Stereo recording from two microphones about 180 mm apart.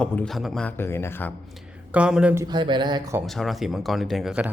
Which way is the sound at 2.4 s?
25° right (ahead or behind).